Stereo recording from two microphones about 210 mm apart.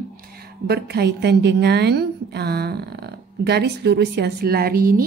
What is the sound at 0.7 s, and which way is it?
A woman's voice, 50° right (ahead or behind).